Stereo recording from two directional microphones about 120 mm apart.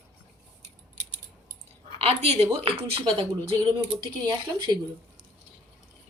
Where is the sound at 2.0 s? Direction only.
55° right (ahead or behind).